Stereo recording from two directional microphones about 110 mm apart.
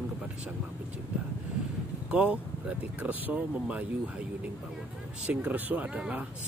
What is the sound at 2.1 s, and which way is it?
Speech, 10° right (ahead or behind).